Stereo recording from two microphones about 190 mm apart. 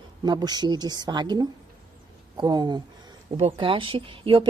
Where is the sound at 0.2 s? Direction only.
20° right (ahead or behind).